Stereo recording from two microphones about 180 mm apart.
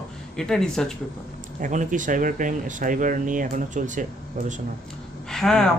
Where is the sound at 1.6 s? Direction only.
45° right (ahead or behind).